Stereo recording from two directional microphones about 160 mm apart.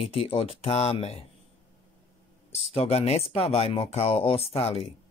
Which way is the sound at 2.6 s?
40° left (ahead or behind).